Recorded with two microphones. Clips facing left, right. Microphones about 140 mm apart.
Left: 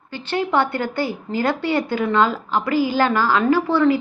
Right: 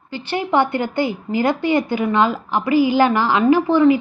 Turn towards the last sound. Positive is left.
turn(degrees=-15)  # may be behind; listen again after turning